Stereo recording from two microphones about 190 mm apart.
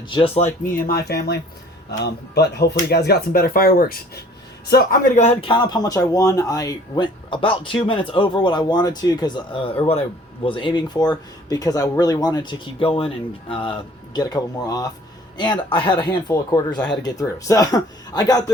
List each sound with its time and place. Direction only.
0.1 s speech: 30° left (ahead or behind)
5.4 s speech: 25° left (ahead or behind)